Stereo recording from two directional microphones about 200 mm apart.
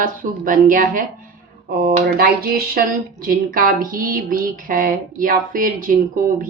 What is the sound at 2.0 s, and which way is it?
A woman's voice, 50° right (ahead or behind).